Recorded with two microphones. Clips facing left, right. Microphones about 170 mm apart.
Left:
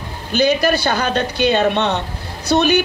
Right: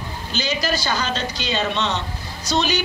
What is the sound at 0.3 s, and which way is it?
Speech, 60° left (ahead or behind).